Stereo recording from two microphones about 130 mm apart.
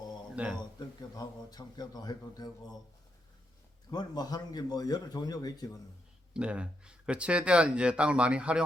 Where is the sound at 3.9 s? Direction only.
30° left (ahead or behind).